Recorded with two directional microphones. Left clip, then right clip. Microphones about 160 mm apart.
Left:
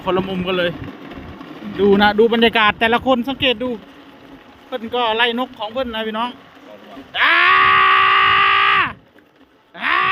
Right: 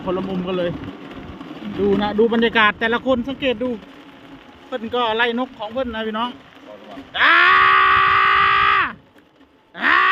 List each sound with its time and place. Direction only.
0.0 s speech: 50° left (ahead or behind)
2.0 s speech: 45° left (ahead or behind)
2.4 s speech: 25° left (ahead or behind)
4.7 s speech: 10° left (ahead or behind)
7.1 s groan: 10° left (ahead or behind)
9.7 s a sound: centre (ahead or behind)